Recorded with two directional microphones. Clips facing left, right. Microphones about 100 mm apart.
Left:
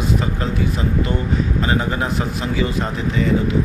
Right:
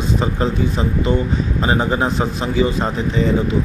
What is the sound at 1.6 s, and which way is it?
Speech, 25° right (ahead or behind).